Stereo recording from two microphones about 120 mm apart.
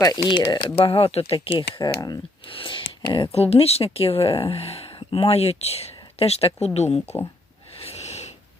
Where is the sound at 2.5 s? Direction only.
45° left (ahead or behind); by 7.1 s 60° left (ahead or behind).